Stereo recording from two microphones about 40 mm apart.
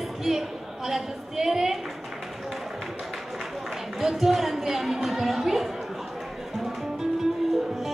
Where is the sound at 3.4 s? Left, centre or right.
Centre.